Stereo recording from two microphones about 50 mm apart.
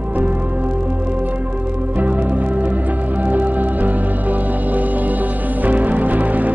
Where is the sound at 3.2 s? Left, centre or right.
Right.